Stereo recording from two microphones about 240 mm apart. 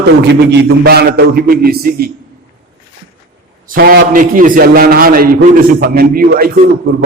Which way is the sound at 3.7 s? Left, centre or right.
Right.